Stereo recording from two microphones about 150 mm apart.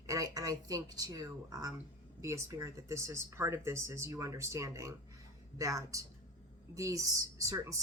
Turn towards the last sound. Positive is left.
turn(degrees=-20)  # may be behind; listen again after turning